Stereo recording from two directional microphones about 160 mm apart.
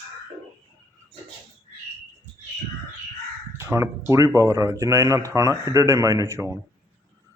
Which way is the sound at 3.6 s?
15° right (ahead or behind).